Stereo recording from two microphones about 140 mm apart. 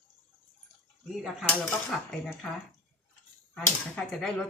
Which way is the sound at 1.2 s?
Centre (ahead or behind).